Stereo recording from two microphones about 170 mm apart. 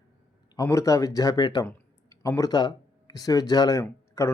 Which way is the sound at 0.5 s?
20° left (ahead or behind).